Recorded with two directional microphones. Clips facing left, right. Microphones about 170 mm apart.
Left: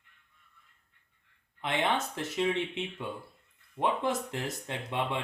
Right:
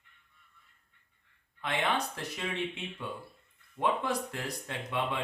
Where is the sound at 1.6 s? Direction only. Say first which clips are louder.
Left 2 dB; 20° left (ahead or behind).